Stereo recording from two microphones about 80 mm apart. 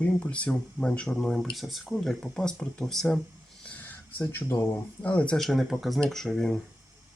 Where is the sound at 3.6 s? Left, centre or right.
Centre.